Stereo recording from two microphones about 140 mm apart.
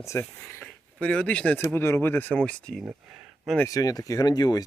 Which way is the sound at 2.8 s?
5° right (ahead or behind).